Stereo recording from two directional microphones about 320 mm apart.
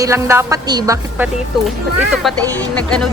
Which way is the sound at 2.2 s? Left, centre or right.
Centre.